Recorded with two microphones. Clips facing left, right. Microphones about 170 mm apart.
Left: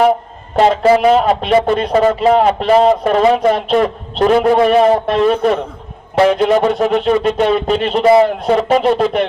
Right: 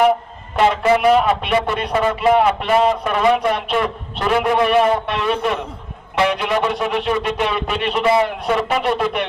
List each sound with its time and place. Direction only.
0.5 s a man's voice: 35° left (ahead or behind)